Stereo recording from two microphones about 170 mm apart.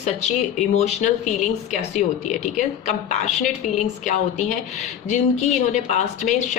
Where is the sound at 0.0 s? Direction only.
40° left (ahead or behind).